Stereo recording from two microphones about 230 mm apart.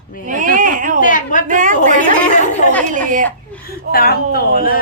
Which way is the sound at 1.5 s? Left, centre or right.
Right.